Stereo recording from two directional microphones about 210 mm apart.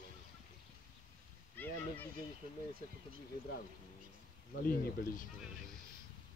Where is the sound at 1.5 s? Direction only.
10° left (ahead or behind).